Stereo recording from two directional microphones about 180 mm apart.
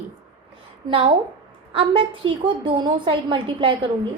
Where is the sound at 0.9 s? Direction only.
25° right (ahead or behind).